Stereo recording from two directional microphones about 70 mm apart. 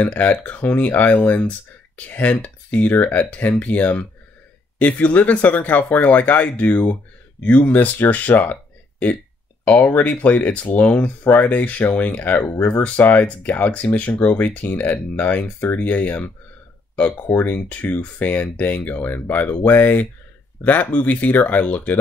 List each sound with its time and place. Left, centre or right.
0.0 s speech: left
9.7 s speech: left
17.3 s speech: left